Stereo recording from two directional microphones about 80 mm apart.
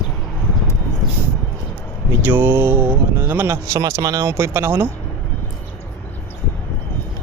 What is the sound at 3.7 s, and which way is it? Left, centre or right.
Speech, right.